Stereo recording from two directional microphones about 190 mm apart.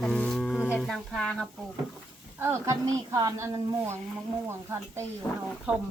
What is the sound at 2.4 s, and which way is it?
A woman's voice, 10° right (ahead or behind).